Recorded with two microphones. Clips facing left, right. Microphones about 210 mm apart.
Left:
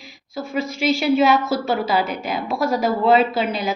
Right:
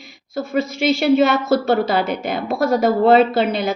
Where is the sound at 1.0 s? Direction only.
50° right (ahead or behind).